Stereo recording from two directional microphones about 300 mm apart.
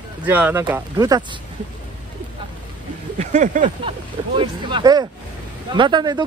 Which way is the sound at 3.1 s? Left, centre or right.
Right.